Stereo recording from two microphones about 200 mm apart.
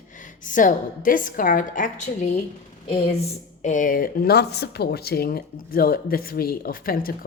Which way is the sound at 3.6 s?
40° left (ahead or behind).